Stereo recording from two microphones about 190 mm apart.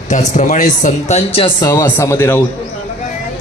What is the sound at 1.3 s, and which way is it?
Speech, 25° left (ahead or behind).